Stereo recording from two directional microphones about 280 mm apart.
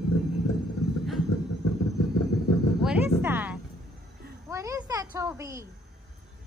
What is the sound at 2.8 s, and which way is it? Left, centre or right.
A woman's voice, centre.